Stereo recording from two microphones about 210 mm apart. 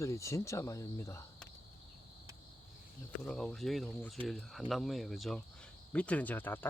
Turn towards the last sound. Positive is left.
turn(degrees=10)  # may be behind; listen again after turning